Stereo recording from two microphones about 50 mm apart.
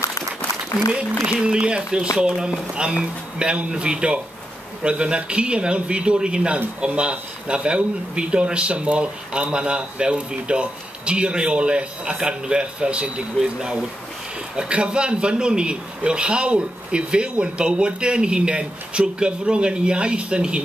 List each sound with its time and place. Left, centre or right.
1.2 s speech: centre